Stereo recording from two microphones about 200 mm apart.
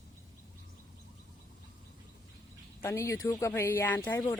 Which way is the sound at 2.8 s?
10° left (ahead or behind).